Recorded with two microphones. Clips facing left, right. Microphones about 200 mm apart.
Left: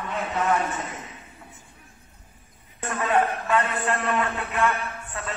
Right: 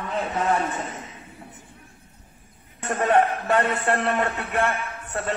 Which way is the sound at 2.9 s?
40° right (ahead or behind).